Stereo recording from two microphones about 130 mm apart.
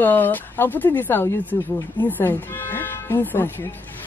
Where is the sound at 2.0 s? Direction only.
15° left (ahead or behind).